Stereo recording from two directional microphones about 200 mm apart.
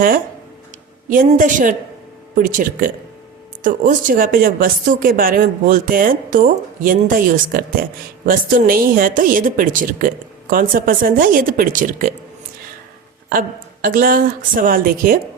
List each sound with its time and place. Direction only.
1.1 s a woman's voice: 40° right (ahead or behind)
13.8 s speech: 45° right (ahead or behind)